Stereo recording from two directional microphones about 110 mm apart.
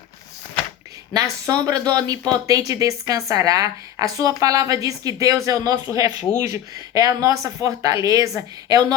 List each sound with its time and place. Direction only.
1.1 s speech: 30° right (ahead or behind)